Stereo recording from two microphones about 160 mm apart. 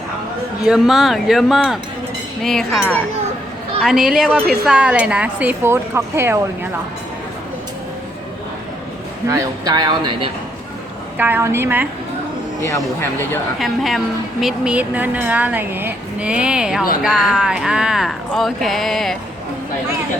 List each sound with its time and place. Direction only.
0.6 s a woman's voice: 5° right (ahead or behind)
9.2 s a man's voice: 20° right (ahead or behind)
11.2 s a woman's voice: 15° right (ahead or behind)
12.6 s speech: 15° left (ahead or behind)
13.6 s a woman's voice: centre (ahead or behind)